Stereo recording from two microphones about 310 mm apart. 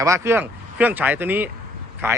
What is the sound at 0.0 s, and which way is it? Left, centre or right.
Speech, centre.